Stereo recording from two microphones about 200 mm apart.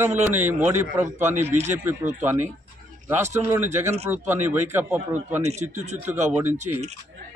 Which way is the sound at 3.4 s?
10° right (ahead or behind).